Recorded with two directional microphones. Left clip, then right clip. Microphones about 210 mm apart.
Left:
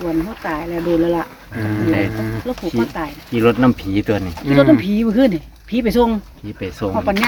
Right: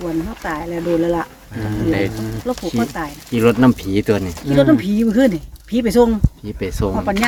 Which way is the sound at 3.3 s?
50° right (ahead or behind).